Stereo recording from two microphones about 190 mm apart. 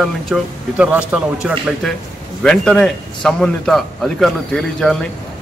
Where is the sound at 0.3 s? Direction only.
5° right (ahead or behind).